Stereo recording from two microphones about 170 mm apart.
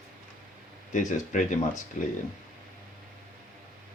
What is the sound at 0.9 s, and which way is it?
Speech, 50° left (ahead or behind).